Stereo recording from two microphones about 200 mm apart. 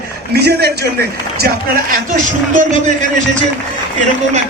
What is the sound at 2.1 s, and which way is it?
A man's voice, 40° right (ahead or behind).